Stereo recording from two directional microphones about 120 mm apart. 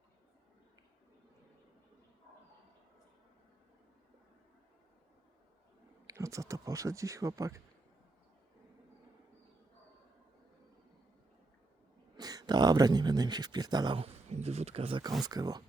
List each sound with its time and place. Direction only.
6.1 s speech: 25° right (ahead or behind)
12.1 s speech: 30° right (ahead or behind)
13.9 s speech: 60° right (ahead or behind)
15.2 s speech: 35° right (ahead or behind)